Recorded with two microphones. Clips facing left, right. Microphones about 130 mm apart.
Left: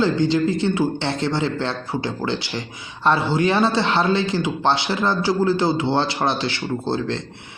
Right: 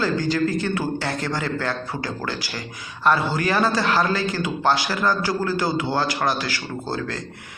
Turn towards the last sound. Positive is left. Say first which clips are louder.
# left 5 dB
turn(degrees=25)  # may be behind; listen again after turning